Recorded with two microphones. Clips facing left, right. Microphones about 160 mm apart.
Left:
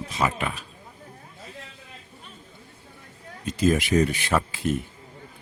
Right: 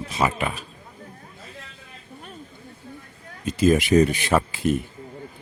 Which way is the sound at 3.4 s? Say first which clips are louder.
Right 3 dB; 10° right (ahead or behind).